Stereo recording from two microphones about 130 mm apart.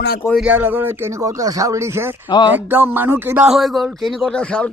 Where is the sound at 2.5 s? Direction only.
15° right (ahead or behind).